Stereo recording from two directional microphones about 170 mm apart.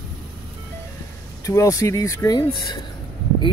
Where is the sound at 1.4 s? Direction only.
20° left (ahead or behind).